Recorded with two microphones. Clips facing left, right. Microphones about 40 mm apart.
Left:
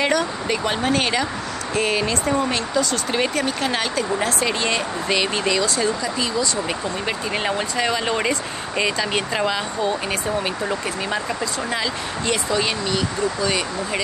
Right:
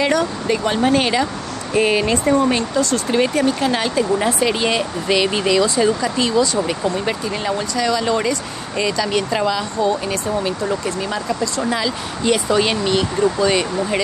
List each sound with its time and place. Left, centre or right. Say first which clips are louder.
0.1 s speech: right 3 dB; centre
1.8 s speech: right 5 dB; centre
3.1 s speech: right 5 dB; centre
3.9 s speech: right 4 dB; centre
4.5 s speech: right 3 dB; centre
7.4 s speech: right 3 dB; left
11.2 s speech: right 4 dB; centre
12.4 s speech: right 5 dB; centre